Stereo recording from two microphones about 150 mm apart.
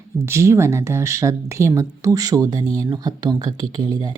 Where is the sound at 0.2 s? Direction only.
20° right (ahead or behind).